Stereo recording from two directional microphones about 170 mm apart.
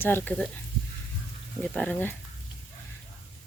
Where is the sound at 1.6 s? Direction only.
5° left (ahead or behind).